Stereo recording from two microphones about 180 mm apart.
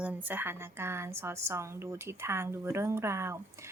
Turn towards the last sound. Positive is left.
turn(degrees=-15)  # may be behind; listen again after turning